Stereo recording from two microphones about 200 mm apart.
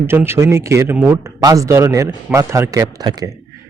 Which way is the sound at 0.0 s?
10° right (ahead or behind).